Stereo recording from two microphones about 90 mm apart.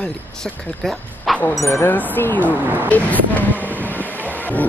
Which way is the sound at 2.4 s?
20° right (ahead or behind).